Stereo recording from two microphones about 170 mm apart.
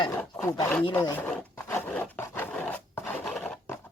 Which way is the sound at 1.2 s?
15° left (ahead or behind).